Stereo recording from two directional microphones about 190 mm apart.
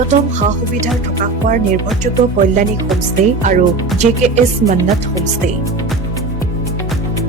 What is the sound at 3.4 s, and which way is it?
Speech, 40° right (ahead or behind).